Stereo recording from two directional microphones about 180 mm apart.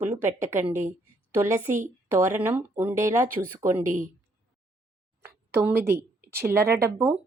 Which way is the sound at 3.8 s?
45° right (ahead or behind).